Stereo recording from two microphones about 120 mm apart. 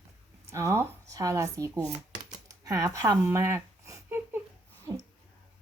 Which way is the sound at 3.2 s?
20° right (ahead or behind).